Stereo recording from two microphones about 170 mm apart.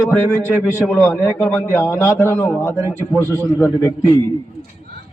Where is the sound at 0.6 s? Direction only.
Centre (ahead or behind).